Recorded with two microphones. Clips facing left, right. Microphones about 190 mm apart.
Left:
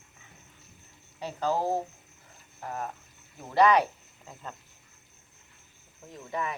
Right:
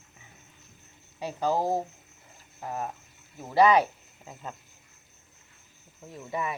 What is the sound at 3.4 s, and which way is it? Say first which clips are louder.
Speech: right 1 dB; 10° right (ahead or behind).